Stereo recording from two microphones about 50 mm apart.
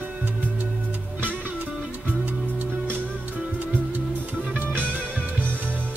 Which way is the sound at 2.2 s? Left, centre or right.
Right.